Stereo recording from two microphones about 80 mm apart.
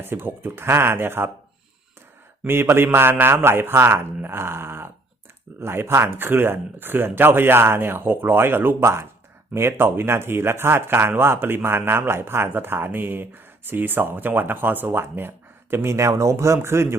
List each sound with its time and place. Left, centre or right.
0.0 s speech: right
2.5 s speech: right